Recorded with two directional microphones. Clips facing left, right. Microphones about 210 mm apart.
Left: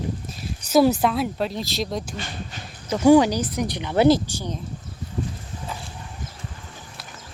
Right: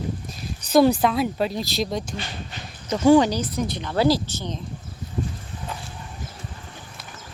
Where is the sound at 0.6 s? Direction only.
5° left (ahead or behind).